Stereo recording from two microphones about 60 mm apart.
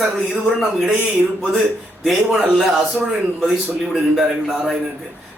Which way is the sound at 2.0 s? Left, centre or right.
Centre.